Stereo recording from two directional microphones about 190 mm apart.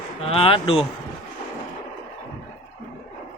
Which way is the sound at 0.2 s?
30° left (ahead or behind).